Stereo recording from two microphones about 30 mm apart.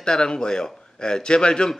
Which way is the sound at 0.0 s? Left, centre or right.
Left.